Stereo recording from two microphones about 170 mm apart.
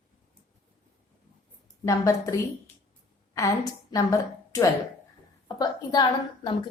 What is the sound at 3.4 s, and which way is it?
A woman's voice, 20° left (ahead or behind).